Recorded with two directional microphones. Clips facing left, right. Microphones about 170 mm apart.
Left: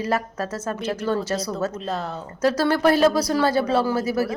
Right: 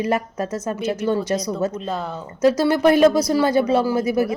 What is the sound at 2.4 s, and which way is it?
Speech, 15° right (ahead or behind).